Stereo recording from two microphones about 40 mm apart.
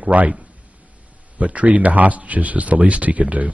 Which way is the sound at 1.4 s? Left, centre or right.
Right.